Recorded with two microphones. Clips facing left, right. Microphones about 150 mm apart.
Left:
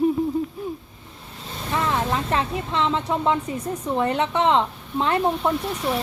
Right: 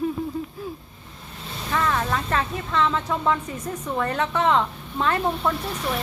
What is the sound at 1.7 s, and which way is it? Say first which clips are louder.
Speech: left 1 dB; 25° left (ahead or behind).